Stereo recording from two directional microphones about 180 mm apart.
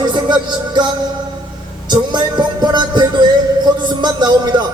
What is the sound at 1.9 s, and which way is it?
A man's voice, 25° right (ahead or behind).